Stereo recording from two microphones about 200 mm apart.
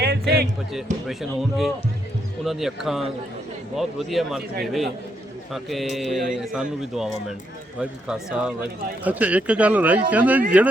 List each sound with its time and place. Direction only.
0.0 s music: 55° right (ahead or behind)
1.0 s speech: centre (ahead or behind)